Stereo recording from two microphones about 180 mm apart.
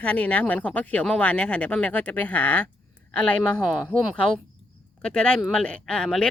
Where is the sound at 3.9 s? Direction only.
5° left (ahead or behind).